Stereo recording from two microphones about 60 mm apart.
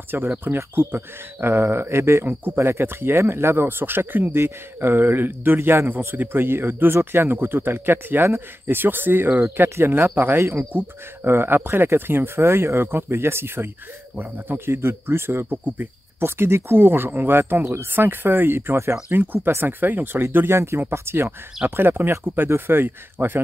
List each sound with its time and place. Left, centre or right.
0.1 s speech: right
14.1 s speech: right
14.8 s speech: right